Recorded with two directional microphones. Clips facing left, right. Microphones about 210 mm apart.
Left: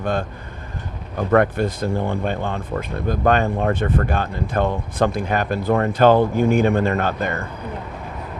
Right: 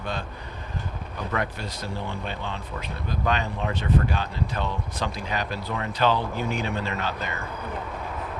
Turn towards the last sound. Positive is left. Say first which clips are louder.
# left 8 dB
turn(degrees=50)  # may be behind; listen again after turning